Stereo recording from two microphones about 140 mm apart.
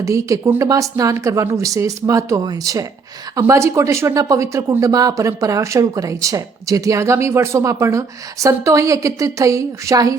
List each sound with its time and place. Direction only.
0.0 s speech: 20° right (ahead or behind)